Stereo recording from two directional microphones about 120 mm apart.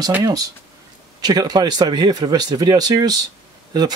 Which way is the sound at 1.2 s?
35° right (ahead or behind).